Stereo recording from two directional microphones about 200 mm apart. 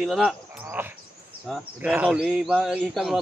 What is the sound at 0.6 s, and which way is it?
Speech, 10° right (ahead or behind).